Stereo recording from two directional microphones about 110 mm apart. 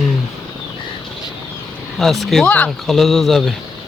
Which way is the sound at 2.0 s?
Centre (ahead or behind).